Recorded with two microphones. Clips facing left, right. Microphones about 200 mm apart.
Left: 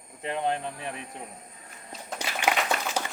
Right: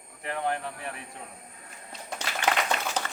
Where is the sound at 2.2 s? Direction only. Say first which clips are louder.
Left 1 dB; 10° left (ahead or behind).